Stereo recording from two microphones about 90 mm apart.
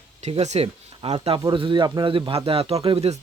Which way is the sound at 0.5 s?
90° right.